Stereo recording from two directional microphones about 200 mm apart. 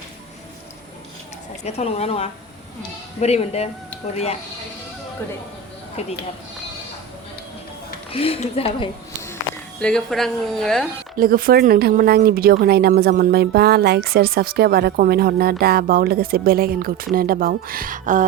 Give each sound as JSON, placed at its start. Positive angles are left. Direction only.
{"t": 1.6, "sound": "a woman's voice", "side_deg": 30}
{"t": 6.0, "sound": "a woman's voice", "side_deg": 30}
{"t": 8.1, "sound": "a woman's voice", "side_deg": 30}
{"t": 9.8, "sound": "a woman's voice", "side_deg": 5}
{"t": 11.2, "sound": "speech", "side_deg": -45}